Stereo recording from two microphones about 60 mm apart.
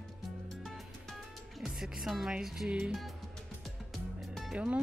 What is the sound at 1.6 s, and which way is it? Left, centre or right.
Music, centre.